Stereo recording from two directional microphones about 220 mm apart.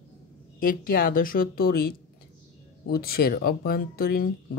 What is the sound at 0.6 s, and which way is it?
Speech, 40° left (ahead or behind).